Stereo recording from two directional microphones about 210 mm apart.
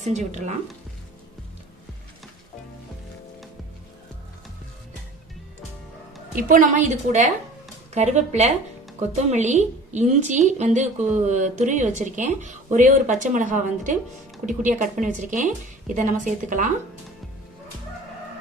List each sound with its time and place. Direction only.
0.1 s a woman's voice: 30° right (ahead or behind)
6.5 s a woman's voice: 35° right (ahead or behind)